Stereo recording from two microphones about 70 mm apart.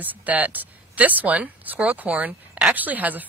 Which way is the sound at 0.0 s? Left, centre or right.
Right.